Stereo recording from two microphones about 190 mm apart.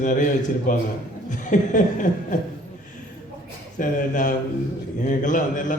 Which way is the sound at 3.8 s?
45° left (ahead or behind).